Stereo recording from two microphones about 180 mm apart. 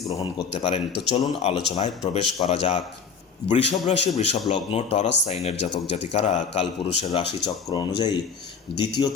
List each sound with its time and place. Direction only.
0.1 s a man's voice: 25° left (ahead or behind)